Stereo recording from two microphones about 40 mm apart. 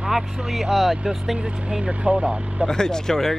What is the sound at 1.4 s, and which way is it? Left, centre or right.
Speech, right.